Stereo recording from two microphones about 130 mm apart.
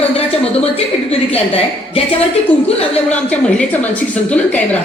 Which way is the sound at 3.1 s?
10° left (ahead or behind).